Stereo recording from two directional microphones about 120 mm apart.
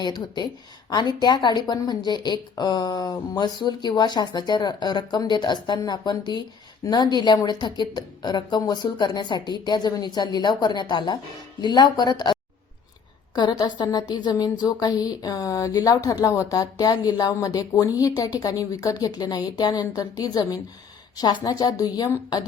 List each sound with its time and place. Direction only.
0.0 s speech: 35° left (ahead or behind)